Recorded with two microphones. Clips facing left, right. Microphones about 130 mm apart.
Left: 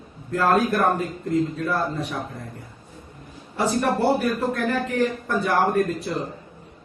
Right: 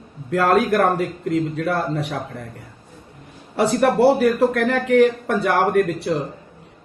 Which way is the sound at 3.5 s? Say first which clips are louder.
Right 5 dB; 70° right (ahead or behind).